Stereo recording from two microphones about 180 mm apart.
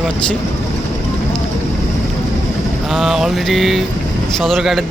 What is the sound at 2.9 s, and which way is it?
Speech, centre (ahead or behind).